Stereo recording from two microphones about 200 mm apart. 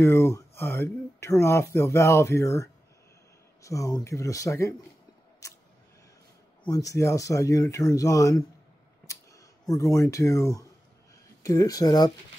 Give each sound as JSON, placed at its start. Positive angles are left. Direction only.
{"t": 0.0, "sound": "speech", "side_deg": 15}
{"t": 6.7, "sound": "speech", "side_deg": 15}
{"t": 9.0, "sound": "a sound", "side_deg": 15}
{"t": 11.4, "sound": "speech", "side_deg": 15}